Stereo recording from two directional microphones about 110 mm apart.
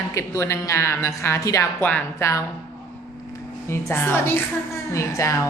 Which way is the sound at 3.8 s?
20° left (ahead or behind).